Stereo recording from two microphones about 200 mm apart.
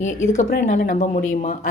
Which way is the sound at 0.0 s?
35° left (ahead or behind).